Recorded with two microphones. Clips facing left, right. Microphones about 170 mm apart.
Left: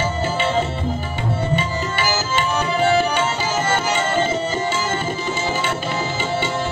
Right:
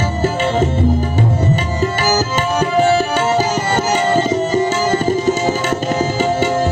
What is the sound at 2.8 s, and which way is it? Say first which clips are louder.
Tabla: right 1 dB; 40° right (ahead or behind).